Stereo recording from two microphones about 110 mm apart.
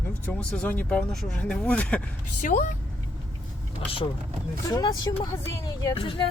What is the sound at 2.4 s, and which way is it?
Speech, 90° left.